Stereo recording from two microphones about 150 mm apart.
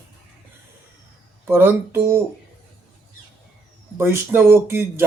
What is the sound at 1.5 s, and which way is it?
Speech, 15° right (ahead or behind).